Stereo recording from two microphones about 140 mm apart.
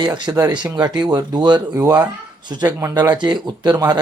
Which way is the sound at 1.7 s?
20° right (ahead or behind).